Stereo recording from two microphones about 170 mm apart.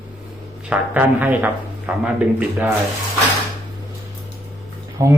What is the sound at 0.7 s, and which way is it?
Speech, 10° right (ahead or behind).